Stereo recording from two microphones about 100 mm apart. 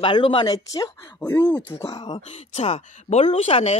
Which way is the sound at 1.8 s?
45° left (ahead or behind).